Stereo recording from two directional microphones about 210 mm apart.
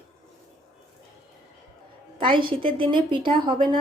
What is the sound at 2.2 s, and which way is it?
Speech, 25° right (ahead or behind).